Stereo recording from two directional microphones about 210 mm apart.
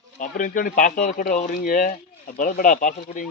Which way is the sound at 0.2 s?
40° left (ahead or behind).